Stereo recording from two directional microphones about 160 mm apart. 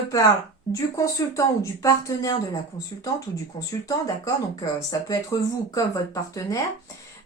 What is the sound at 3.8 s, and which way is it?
Speech, 20° left (ahead or behind).